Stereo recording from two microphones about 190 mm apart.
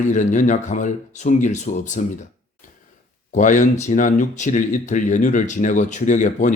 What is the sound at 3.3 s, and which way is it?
Speech, 40° left (ahead or behind).